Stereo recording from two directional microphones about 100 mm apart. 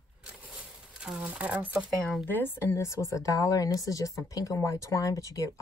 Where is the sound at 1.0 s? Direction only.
10° right (ahead or behind).